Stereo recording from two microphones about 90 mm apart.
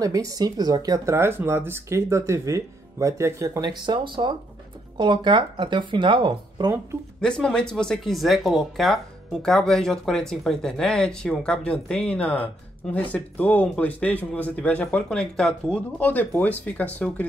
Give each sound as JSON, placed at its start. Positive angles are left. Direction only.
{"t": 0.0, "sound": "speech", "side_deg": -40}
{"t": 3.6, "sound": "speech", "side_deg": -55}
{"t": 7.2, "sound": "speech", "side_deg": 10}
{"t": 16.0, "sound": "speech", "side_deg": 20}